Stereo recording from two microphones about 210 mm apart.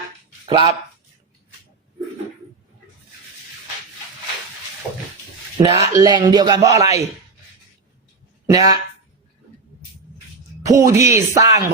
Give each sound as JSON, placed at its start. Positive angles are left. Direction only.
{"t": 0.4, "sound": "speech", "side_deg": -25}
{"t": 5.5, "sound": "speech", "side_deg": -20}
{"t": 8.4, "sound": "speech", "side_deg": -15}
{"t": 10.7, "sound": "speech", "side_deg": -15}